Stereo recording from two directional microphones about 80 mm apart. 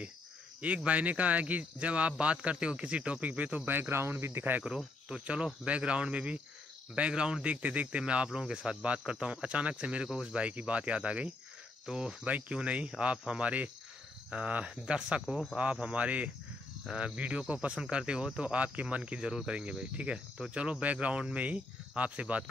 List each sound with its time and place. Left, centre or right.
0.6 s speech: centre
4.6 s speech: centre